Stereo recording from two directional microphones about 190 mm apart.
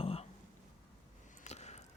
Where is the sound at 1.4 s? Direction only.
35° left (ahead or behind).